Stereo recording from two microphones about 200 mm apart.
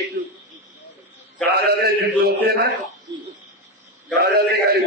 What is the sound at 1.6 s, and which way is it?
Speech, 50° right (ahead or behind).